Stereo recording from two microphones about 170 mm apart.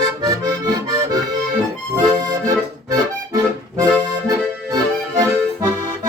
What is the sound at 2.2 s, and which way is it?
Accordion, 20° right (ahead or behind).